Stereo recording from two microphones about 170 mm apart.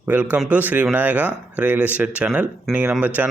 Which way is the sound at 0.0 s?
10° right (ahead or behind).